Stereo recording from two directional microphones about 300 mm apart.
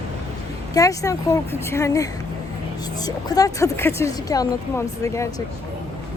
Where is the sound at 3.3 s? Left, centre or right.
Centre.